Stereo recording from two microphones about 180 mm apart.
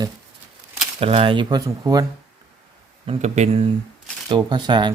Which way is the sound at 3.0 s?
40° right (ahead or behind).